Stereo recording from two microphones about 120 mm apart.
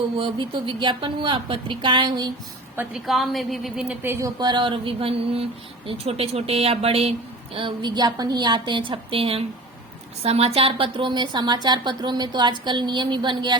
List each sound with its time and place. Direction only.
0.2 s a woman's voice: 45° right (ahead or behind)
2.9 s a woman's voice: centre (ahead or behind)
4.0 s speech: 20° right (ahead or behind)
4.4 s speech: 40° right (ahead or behind); by 7.1 s 55° right (ahead or behind)
7.5 s a woman's voice: 45° right (ahead or behind)